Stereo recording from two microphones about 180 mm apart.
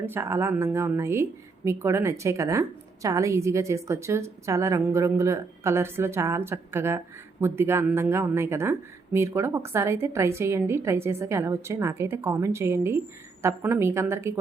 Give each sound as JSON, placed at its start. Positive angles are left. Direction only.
{"t": 0.0, "sound": "speech", "side_deg": -15}